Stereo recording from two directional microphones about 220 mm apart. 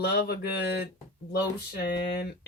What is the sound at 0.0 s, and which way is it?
Speech, 45° left (ahead or behind).